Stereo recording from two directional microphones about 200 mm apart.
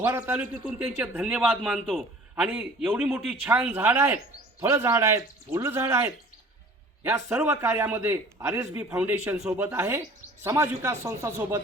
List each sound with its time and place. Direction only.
0.0 s speech: 10° right (ahead or behind)
2.3 s speech: 10° right (ahead or behind)